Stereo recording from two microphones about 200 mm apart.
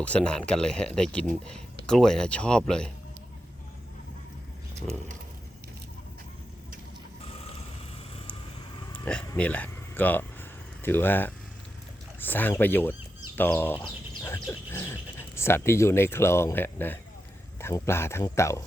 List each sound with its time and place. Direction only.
0.0 s speech: 5° left (ahead or behind)
8.9 s speech: 5° left (ahead or behind)
13.7 s bird: 20° left (ahead or behind)
14.4 s speech: 10° left (ahead or behind)